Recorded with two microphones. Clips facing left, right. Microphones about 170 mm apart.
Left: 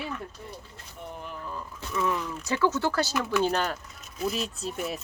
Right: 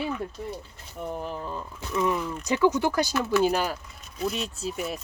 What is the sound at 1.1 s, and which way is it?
Speech, 35° right (ahead or behind).